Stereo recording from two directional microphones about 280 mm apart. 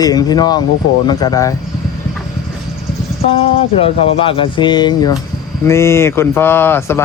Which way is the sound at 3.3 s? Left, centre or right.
Left.